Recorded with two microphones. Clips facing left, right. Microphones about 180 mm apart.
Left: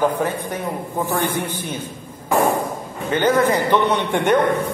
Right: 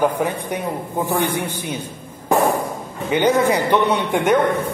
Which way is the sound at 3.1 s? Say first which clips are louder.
Right 1 dB; 15° right (ahead or behind).